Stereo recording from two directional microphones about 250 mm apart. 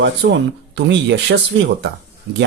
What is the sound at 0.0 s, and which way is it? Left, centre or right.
Speech, right.